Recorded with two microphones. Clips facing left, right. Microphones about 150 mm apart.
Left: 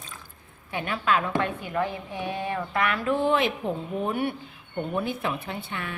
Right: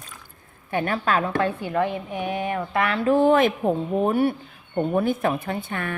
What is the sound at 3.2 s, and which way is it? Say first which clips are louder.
A woman's voice: right 6 dB; 45° right (ahead or behind).